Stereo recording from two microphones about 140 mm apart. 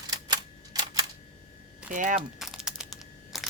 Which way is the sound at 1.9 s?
70° right (ahead or behind).